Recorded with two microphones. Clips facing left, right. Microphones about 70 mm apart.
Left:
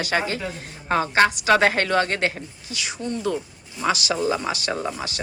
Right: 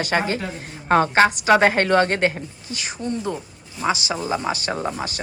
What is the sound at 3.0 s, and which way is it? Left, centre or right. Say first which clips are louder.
A woman's voice: even; right.